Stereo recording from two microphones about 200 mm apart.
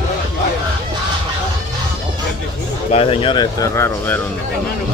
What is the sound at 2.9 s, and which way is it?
Speech, 30° left (ahead or behind).